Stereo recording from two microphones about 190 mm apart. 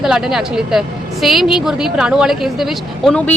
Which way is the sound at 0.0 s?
5° right (ahead or behind).